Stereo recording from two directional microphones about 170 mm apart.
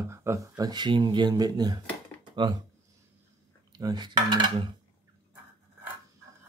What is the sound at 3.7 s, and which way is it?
Cutlery, 25° right (ahead or behind).